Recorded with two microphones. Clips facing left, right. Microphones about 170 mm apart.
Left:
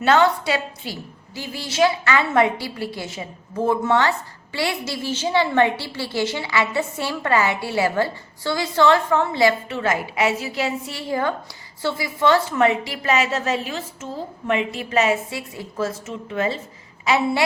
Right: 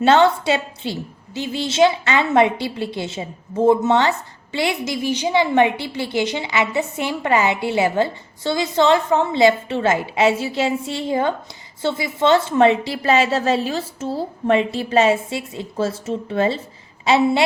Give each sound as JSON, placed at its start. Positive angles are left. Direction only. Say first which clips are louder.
{"t": 0.0, "sound": "a woman's voice", "louder": "right 3 dB", "side_deg": -25}